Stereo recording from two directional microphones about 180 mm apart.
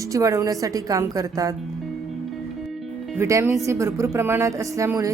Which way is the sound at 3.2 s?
15° right (ahead or behind).